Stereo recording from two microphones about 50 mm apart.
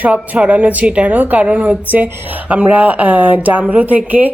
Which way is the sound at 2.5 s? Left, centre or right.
Right.